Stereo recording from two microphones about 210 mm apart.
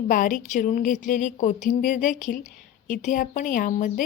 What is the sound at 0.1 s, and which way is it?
Speech, 40° left (ahead or behind).